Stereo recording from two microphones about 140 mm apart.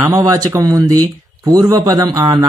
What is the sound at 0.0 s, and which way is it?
Speech, 25° right (ahead or behind).